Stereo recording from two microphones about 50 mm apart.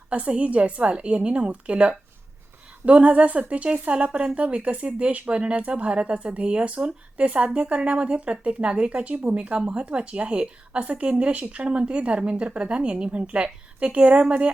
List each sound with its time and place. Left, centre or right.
0.1 s a woman's voice: right